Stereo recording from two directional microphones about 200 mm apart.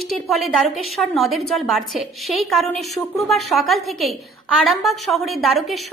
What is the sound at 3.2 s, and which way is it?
A woman's voice, centre (ahead or behind).